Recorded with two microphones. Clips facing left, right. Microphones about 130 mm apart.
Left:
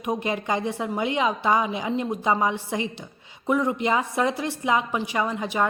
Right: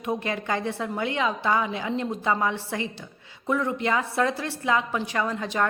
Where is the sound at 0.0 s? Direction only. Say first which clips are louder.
Left 2 dB; 15° left (ahead or behind).